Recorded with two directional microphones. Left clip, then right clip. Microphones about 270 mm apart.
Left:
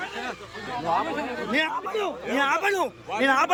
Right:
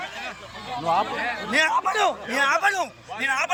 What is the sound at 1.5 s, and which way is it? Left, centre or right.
A man's voice, centre.